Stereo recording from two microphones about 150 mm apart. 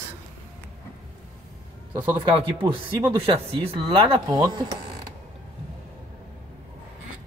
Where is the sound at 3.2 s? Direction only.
40° right (ahead or behind).